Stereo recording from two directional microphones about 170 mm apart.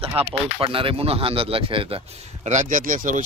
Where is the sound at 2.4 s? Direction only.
45° right (ahead or behind).